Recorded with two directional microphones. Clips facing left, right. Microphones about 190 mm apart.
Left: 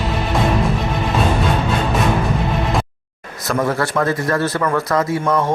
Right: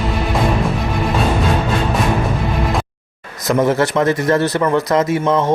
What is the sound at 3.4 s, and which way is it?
A man's voice, 20° right (ahead or behind).